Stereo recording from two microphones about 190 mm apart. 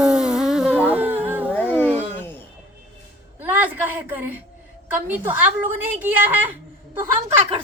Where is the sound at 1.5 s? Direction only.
10° left (ahead or behind).